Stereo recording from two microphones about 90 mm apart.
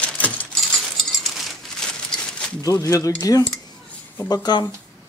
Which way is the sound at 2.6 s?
40° left (ahead or behind).